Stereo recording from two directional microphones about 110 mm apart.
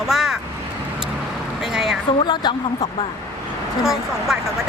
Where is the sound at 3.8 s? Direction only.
5° right (ahead or behind).